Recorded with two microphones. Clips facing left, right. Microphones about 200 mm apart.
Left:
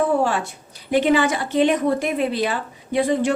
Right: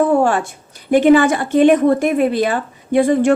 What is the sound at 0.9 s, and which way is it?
A woman's voice, 50° right (ahead or behind).